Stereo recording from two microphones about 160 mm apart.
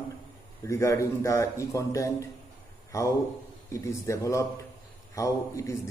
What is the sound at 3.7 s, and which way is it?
A man's voice, 20° left (ahead or behind).